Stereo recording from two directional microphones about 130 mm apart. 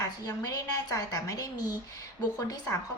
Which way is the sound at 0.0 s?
30° left (ahead or behind).